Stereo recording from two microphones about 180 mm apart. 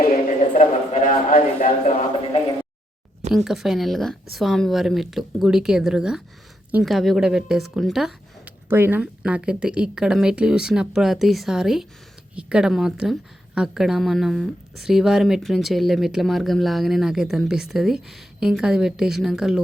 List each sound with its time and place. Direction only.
0.0 s a man's voice: 45° left (ahead or behind)
3.3 s a woman's voice: centre (ahead or behind)